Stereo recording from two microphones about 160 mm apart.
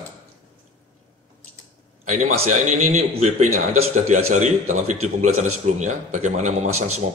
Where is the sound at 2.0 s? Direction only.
45° right (ahead or behind).